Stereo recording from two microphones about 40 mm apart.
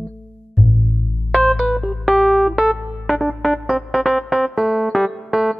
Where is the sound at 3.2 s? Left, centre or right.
Centre.